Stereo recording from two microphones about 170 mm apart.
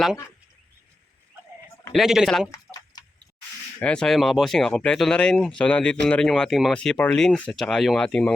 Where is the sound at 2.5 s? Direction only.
25° left (ahead or behind).